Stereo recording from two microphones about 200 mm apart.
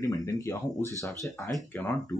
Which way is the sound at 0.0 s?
15° left (ahead or behind).